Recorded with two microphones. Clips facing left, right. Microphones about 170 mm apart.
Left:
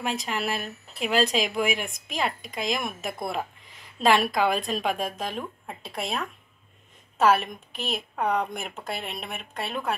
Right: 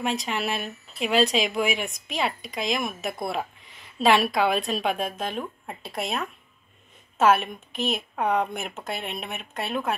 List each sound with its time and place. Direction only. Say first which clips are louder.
0.0 s speech: right 2 dB; centre (ahead or behind)
1.9 s a woman's voice: right 2 dB; 50° left (ahead or behind)
2.7 s speech: right 2 dB; centre (ahead or behind)